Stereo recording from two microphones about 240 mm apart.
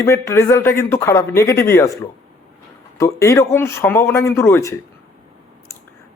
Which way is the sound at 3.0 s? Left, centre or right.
Centre.